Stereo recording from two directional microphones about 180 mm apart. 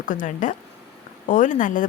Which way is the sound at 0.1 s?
45° left (ahead or behind).